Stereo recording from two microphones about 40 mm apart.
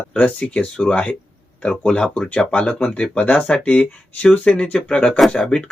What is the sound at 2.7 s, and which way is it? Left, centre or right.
Speech, left.